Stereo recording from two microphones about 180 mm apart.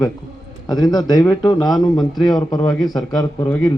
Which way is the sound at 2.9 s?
20° left (ahead or behind).